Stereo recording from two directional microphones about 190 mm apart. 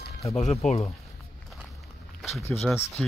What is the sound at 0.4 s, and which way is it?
Speech, 35° left (ahead or behind).